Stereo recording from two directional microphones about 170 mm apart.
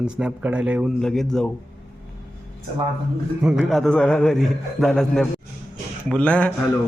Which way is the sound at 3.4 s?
5° right (ahead or behind).